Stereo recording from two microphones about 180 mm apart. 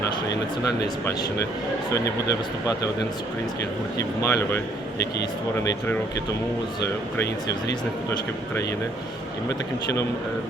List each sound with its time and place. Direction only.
3.9 s speech: 15° left (ahead or behind)